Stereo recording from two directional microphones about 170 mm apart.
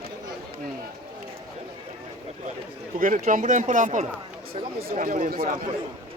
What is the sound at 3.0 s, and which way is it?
Speech, 50° right (ahead or behind).